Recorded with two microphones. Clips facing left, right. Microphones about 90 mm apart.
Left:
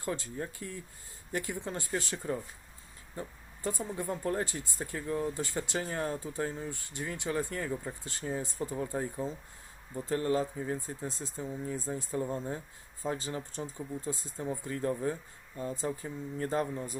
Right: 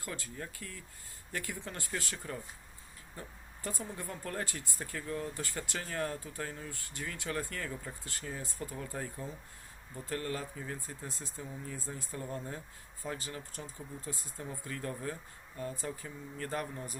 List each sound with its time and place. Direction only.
0.0 s speech: 25° left (ahead or behind)